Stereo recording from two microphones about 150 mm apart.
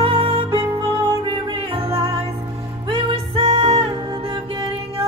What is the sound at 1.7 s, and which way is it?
Music, 40° right (ahead or behind).